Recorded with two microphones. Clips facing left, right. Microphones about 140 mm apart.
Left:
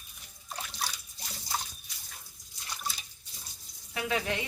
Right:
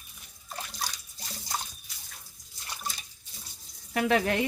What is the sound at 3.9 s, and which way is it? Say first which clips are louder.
Speech: right 7 dB; 60° right (ahead or behind).